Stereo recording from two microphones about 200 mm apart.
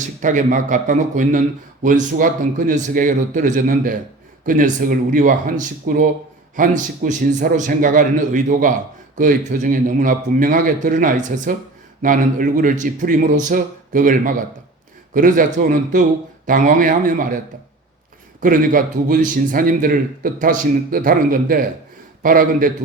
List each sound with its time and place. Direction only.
0.2 s a man's voice: 40° right (ahead or behind)